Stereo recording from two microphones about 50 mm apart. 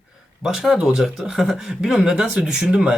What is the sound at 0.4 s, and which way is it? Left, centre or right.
A man's voice, centre.